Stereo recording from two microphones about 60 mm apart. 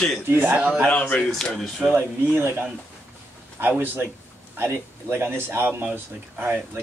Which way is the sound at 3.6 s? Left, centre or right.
Right.